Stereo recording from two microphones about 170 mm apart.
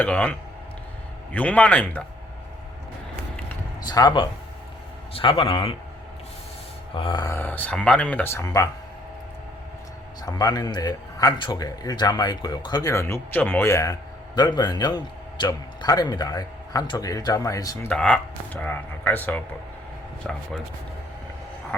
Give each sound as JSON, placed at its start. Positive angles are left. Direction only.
{"t": 0.0, "sound": "speech", "side_deg": 10}
{"t": 3.8, "sound": "a man's voice", "side_deg": 25}
{"t": 6.9, "sound": "speech", "side_deg": 30}
{"t": 7.3, "sound": "speech", "side_deg": 10}
{"t": 10.2, "sound": "speech", "side_deg": 20}
{"t": 17.8, "sound": "speech", "side_deg": 5}